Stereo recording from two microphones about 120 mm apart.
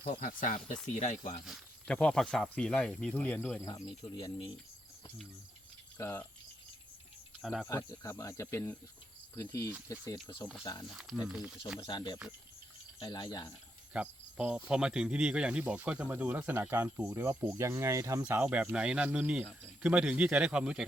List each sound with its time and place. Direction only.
0.1 s speech: 90° left
1.9 s speech: 5° left (ahead or behind)
4.2 s speech: 45° left (ahead or behind)
6.0 s speech: 15° left (ahead or behind)
7.4 s speech: 5° right (ahead or behind)
7.7 s speech: 25° left (ahead or behind)
10.8 s speech: 5° right (ahead or behind)
11.8 s speech: 35° left (ahead or behind)
13.9 s cricket: 10° right (ahead or behind)
14.7 s speech: 5° right (ahead or behind)